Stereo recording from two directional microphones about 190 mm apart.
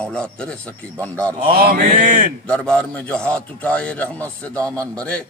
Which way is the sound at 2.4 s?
5° left (ahead or behind).